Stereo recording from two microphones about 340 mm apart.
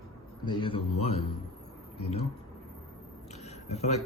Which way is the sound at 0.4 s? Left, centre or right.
Centre.